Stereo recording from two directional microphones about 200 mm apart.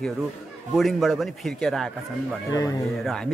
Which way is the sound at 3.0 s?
Centre (ahead or behind).